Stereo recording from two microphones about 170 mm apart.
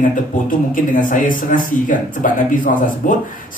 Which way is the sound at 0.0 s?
55° left (ahead or behind).